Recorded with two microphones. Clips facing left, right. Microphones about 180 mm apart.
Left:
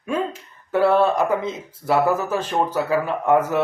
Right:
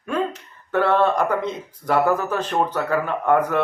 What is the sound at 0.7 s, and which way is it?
Speech, 10° left (ahead or behind).